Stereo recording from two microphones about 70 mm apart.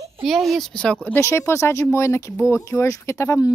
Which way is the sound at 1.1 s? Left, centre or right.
Left.